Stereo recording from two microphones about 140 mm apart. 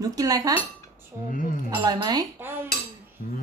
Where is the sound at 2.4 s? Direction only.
15° right (ahead or behind).